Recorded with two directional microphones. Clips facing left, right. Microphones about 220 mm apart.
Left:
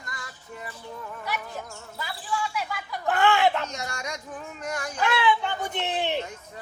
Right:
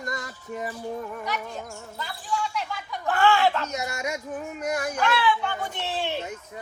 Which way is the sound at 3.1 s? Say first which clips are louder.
Right 1 dB; 20° left (ahead or behind).